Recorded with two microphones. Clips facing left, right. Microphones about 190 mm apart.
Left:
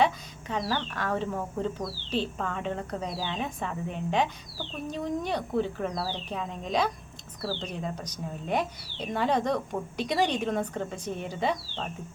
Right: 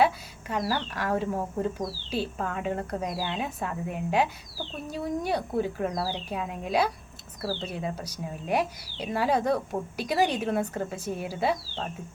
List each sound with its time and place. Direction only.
0.0 s speech: 10° right (ahead or behind)